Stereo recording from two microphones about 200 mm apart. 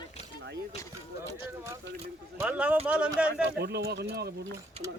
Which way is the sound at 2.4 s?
5° right (ahead or behind).